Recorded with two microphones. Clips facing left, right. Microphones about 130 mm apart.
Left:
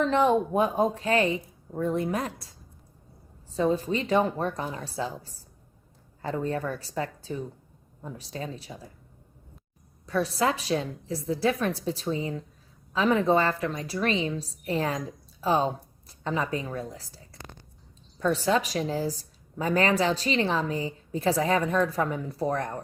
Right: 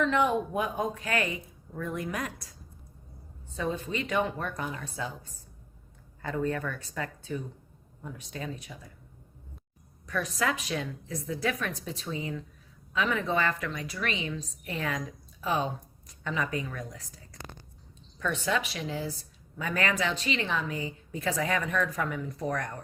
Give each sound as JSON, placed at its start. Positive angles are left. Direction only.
{"t": 0.0, "sound": "a woman's voice", "side_deg": 35}
{"t": 10.1, "sound": "a woman's voice", "side_deg": 30}